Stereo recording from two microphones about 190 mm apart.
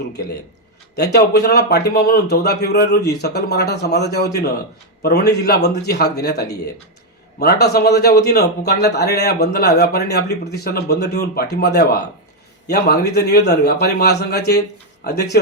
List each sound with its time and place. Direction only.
0.9 s a man's voice: 60° left (ahead or behind)